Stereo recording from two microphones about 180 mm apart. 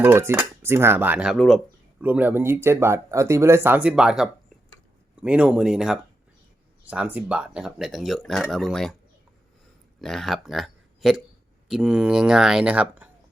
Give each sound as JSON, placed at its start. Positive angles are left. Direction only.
{"t": 0.0, "sound": "speech", "side_deg": -15}
{"t": 10.0, "sound": "speech", "side_deg": 0}